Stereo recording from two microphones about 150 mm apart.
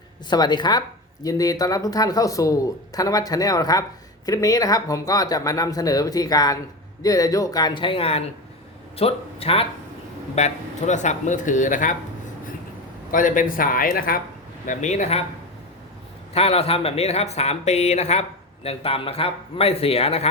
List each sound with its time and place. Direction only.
0.3 s speech: 30° left (ahead or behind); by 11.9 s 60° left (ahead or behind)
13.1 s a man's voice: 60° left (ahead or behind)
14.7 s speech: 55° left (ahead or behind)
16.3 s speech: 45° left (ahead or behind)